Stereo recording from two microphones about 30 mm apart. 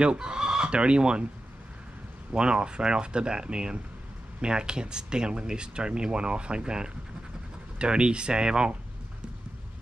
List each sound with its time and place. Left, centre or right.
0.2 s fowl: right
0.7 s speech: right
2.3 s speech: right